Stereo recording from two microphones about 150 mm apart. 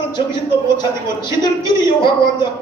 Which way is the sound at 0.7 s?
30° left (ahead or behind).